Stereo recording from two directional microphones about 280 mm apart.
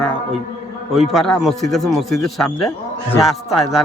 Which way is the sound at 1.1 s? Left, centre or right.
Centre.